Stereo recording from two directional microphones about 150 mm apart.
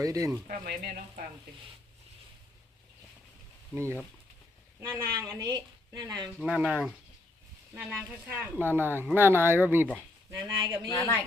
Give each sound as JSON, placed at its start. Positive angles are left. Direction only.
{"t": 0.0, "sound": "speech", "side_deg": -20}
{"t": 0.4, "sound": "speech", "side_deg": -65}
{"t": 4.8, "sound": "speech", "side_deg": -20}
{"t": 6.4, "sound": "speech", "side_deg": -5}
{"t": 10.4, "sound": "speech", "side_deg": -25}
{"t": 10.8, "sound": "a woman's voice", "side_deg": 25}